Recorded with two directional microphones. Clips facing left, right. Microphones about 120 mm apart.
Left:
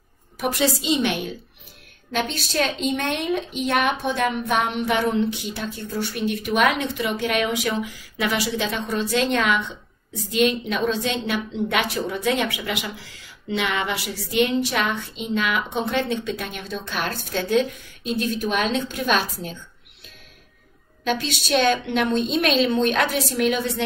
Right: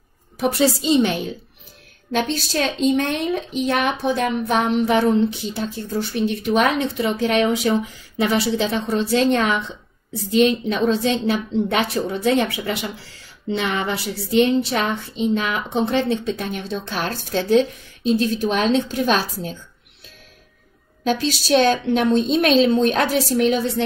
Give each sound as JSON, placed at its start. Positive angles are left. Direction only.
{"t": 0.4, "sound": "a woman's voice", "side_deg": -35}
{"t": 21.0, "sound": "a woman's voice", "side_deg": -35}